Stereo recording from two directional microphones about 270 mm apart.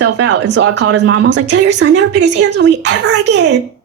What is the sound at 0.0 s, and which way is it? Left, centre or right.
A woman's voice, right.